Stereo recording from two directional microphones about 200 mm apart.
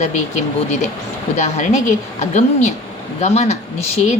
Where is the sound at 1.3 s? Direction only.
35° left (ahead or behind).